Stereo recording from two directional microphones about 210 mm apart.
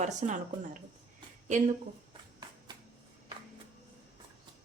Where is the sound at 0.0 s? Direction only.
35° right (ahead or behind).